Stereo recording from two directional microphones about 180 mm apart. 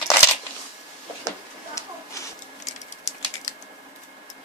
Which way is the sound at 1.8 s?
15° left (ahead or behind).